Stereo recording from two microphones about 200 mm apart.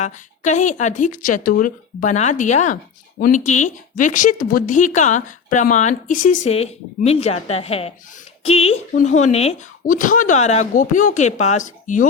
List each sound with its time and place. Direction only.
0.0 s speech: 35° left (ahead or behind)